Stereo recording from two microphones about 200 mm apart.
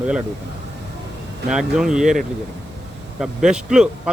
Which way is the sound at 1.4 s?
5° right (ahead or behind).